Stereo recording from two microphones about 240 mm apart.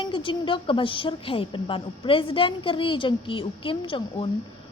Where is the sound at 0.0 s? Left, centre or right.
Left.